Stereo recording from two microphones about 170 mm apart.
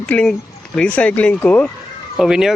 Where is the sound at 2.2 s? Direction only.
5° right (ahead or behind).